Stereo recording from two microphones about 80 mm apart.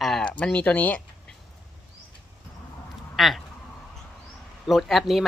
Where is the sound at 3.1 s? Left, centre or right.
Centre.